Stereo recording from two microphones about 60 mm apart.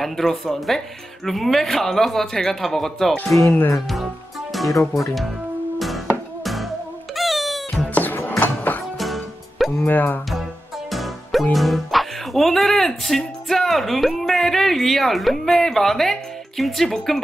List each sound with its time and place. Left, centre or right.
0.0 s speech: centre
3.8 s music: centre
5.8 s music: centre
7.9 s music: left
8.2 s a sound: left
8.9 s music: centre
9.8 s speech: left
10.9 s music: centre
11.5 s speech: centre